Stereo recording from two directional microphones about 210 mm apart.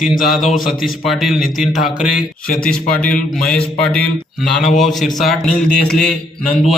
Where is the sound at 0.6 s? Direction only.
Centre (ahead or behind).